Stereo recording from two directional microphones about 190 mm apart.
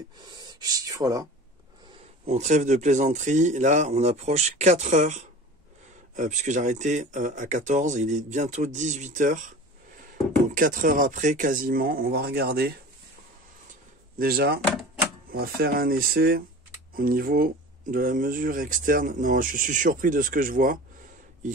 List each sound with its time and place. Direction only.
0.2 s speech: 25° right (ahead or behind)
2.2 s speech: 35° right (ahead or behind)
10.5 s speech: 45° right (ahead or behind)
14.1 s speech: 50° right (ahead or behind)